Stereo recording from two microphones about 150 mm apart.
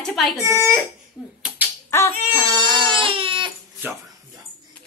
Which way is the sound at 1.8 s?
15° left (ahead or behind).